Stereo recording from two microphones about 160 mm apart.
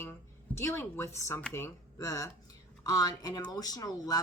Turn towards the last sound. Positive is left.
turn(degrees=25)  # may be behind; listen again after turning